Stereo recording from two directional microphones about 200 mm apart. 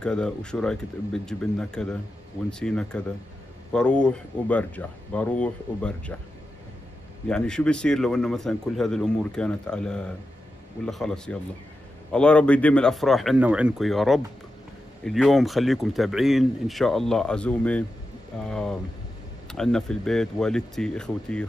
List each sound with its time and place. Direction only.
0.0 s speech: 5° left (ahead or behind)
7.2 s speech: 5° left (ahead or behind)